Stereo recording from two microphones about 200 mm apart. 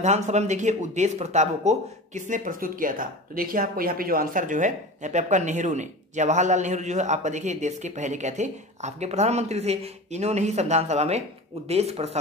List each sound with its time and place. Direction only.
0.0 s speech: 35° right (ahead or behind)